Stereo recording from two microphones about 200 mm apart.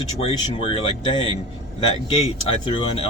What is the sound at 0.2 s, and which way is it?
Speech, 30° left (ahead or behind).